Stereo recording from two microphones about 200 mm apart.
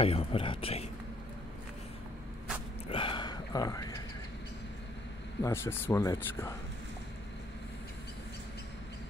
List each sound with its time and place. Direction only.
0.0 s a man's voice: 30° left (ahead or behind)
2.9 s a sound: 25° left (ahead or behind)
5.4 s speech: 10° left (ahead or behind)